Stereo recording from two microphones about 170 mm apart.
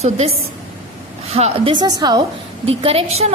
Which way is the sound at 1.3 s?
35° right (ahead or behind).